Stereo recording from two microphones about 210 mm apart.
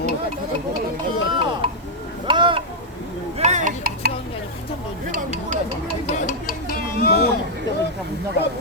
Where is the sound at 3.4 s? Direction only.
35° right (ahead or behind).